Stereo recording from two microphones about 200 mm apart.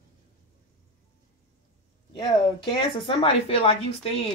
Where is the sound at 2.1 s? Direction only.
25° left (ahead or behind).